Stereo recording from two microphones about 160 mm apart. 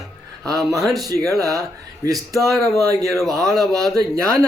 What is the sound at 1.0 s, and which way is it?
Music, 20° right (ahead or behind).